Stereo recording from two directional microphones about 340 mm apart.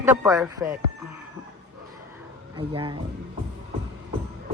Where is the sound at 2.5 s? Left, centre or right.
Centre.